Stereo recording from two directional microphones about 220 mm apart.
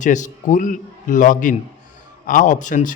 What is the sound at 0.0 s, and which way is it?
Speech, 35° left (ahead or behind).